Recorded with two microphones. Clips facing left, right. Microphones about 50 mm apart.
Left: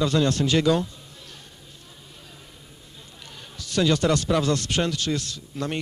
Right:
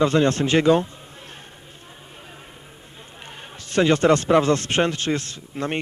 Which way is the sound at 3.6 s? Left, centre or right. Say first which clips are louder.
Right 4 dB; right.